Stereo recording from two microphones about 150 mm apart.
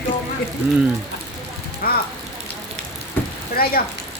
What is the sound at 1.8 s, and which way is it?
Rain, 80° left.